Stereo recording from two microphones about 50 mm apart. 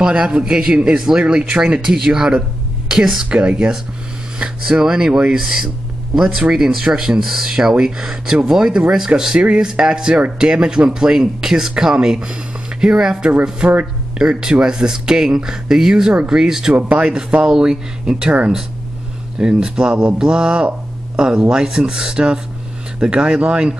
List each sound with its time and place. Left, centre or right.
0.0 s speech: centre